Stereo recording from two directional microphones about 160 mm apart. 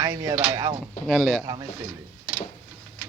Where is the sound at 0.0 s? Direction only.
25° right (ahead or behind).